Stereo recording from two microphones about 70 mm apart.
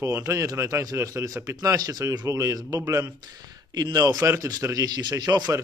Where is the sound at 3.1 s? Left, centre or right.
Right.